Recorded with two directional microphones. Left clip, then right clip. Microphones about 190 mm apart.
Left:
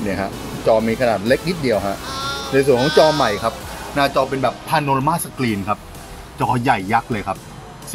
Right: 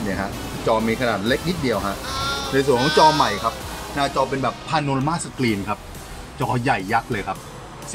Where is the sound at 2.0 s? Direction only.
Centre (ahead or behind).